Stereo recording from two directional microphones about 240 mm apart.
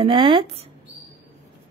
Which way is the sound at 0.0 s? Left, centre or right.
Right.